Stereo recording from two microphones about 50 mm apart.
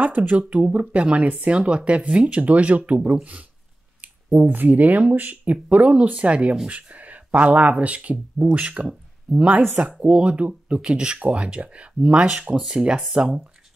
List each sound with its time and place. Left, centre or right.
0.0 s speech: right
3.0 s speech: centre
4.0 s speech: right
10.8 s speech: centre
12.5 s speech: centre